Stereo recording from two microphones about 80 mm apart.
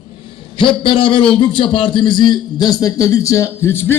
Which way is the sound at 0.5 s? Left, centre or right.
Left.